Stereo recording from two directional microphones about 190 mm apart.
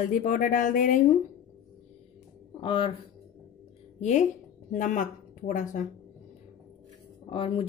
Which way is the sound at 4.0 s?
35° left (ahead or behind).